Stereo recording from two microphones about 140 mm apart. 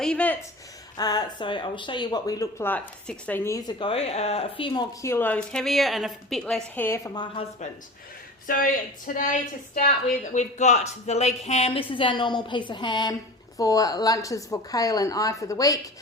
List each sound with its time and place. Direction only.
0.0 s a sound: 10° left (ahead or behind)
0.9 s speech: 30° left (ahead or behind)
3.7 s a woman's voice: 40° left (ahead or behind)
5.0 s a woman's voice: 15° left (ahead or behind)
6.7 s a woman's voice: 15° left (ahead or behind)
7.1 s a woman's voice: 30° left (ahead or behind)
8.4 s speech: 85° left
10.3 s a woman's voice: 55° left (ahead or behind); by 15.8 s 25° left (ahead or behind)